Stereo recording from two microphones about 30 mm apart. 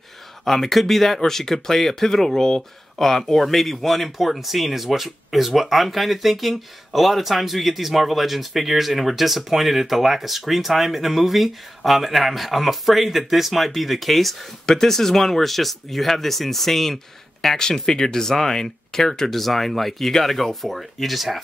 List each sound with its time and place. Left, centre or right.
0.5 s speech: centre
14.7 s speech: centre
17.6 s speech: centre